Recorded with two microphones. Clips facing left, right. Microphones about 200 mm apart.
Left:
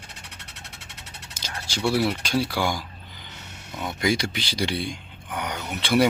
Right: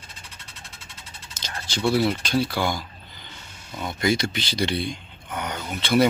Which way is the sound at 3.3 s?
65° left (ahead or behind).